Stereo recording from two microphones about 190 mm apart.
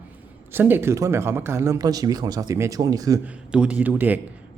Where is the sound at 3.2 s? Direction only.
5° right (ahead or behind).